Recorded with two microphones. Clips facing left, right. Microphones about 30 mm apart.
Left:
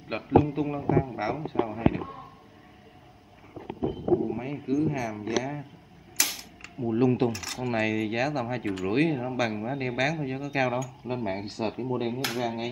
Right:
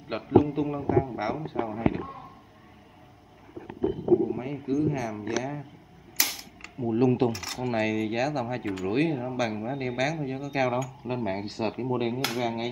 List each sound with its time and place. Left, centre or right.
0.4 s speech: centre
1.6 s speech: centre
1.9 s speech: centre
4.0 s a sound: left
4.4 s speech: centre
6.2 s mechanisms: centre
6.8 s speech: centre